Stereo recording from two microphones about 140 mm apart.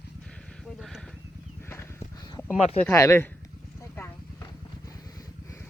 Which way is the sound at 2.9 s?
20° left (ahead or behind).